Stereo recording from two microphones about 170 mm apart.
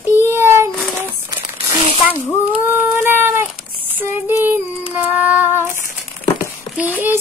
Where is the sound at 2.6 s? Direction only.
10° right (ahead or behind).